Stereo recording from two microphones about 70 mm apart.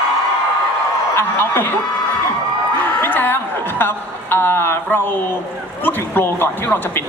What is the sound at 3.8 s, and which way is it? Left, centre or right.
A woman's voice, left.